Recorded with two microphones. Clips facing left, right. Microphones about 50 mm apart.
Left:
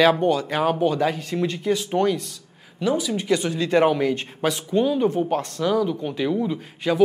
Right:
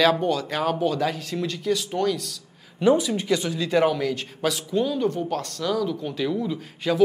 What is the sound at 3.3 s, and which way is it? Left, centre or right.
Speech, left.